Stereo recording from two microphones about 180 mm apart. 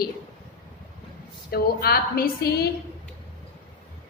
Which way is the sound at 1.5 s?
55° left (ahead or behind).